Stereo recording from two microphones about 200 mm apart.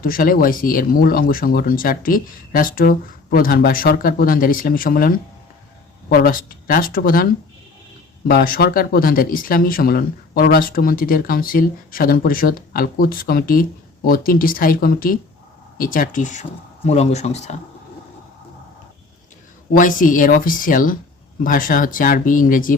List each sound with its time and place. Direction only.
0.0 s speech: 45° left (ahead or behind)
8.3 s speech: 50° left (ahead or behind); by 17.6 s 35° left (ahead or behind)
19.7 s speech: 40° left (ahead or behind)